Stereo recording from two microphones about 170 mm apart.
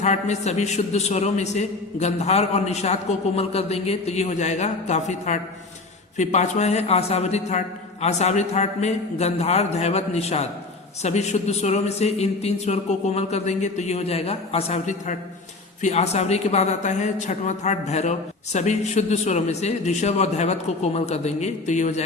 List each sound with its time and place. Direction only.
0.0 s a woman's voice: 40° left (ahead or behind)